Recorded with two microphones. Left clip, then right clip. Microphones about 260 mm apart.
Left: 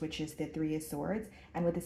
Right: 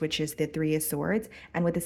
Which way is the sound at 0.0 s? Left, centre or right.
Right.